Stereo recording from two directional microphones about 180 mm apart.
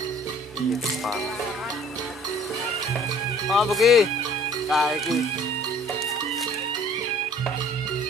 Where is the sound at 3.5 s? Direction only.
Centre (ahead or behind).